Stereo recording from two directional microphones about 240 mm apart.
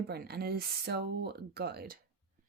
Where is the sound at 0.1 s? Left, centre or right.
Right.